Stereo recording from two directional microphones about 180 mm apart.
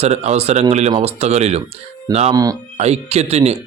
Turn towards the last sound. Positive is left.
turn(degrees=-35)  # may be behind; listen again after turning